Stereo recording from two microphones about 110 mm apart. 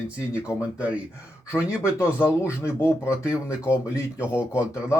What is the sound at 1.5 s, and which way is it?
Speech, 25° left (ahead or behind).